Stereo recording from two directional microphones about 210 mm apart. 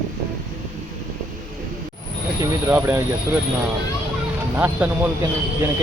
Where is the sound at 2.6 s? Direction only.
10° right (ahead or behind).